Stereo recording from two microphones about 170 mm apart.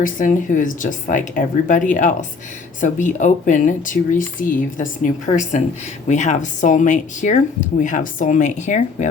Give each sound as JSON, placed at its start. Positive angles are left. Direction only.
{"t": 0.0, "sound": "speech", "side_deg": 50}